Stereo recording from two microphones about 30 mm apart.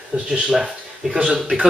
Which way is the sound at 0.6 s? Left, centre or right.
Centre.